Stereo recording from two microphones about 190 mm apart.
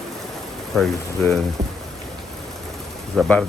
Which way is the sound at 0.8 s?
Centre (ahead or behind).